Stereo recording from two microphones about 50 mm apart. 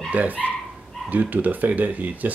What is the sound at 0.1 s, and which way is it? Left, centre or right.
Speech, right.